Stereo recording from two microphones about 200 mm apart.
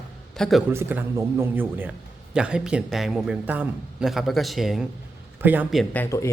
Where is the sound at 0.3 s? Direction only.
Centre (ahead or behind).